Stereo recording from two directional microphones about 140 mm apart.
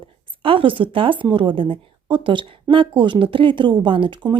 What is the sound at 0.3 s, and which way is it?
Speech, 40° right (ahead or behind).